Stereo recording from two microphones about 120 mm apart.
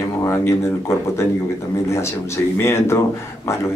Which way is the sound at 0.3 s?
25° left (ahead or behind).